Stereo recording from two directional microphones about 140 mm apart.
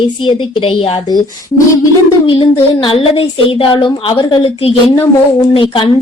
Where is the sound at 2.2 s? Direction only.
35° left (ahead or behind).